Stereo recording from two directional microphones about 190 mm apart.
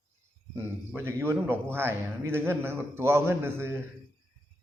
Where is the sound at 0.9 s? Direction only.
10° right (ahead or behind).